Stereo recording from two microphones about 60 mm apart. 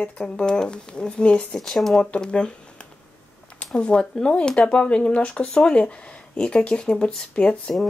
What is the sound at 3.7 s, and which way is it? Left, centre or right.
Speech, centre.